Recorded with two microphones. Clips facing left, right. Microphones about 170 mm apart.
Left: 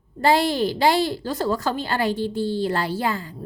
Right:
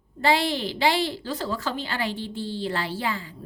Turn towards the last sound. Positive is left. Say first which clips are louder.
# left 4 dB
turn(degrees=45)  # may be behind; listen again after turning